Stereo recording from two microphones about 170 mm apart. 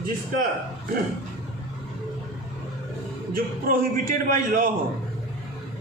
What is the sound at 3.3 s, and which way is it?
A man's voice, 55° right (ahead or behind).